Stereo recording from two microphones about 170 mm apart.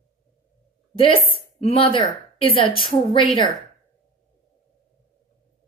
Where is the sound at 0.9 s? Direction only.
30° left (ahead or behind).